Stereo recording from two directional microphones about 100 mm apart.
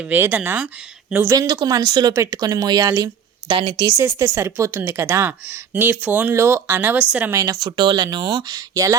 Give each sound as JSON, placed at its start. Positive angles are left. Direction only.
{"t": 0.0, "sound": "speech", "side_deg": -20}
{"t": 1.3, "sound": "speech", "side_deg": -40}
{"t": 3.5, "sound": "speech", "side_deg": -70}
{"t": 3.9, "sound": "a woman's voice", "side_deg": -25}
{"t": 7.3, "sound": "speech", "side_deg": -35}
{"t": 7.8, "sound": "speech", "side_deg": -50}